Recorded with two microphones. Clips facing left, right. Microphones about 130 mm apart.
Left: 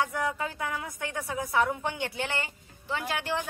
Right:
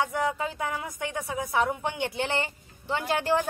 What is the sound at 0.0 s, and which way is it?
A woman's voice, 20° right (ahead or behind).